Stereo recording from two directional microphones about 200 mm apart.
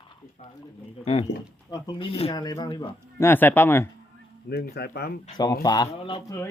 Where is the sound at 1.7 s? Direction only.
20° left (ahead or behind).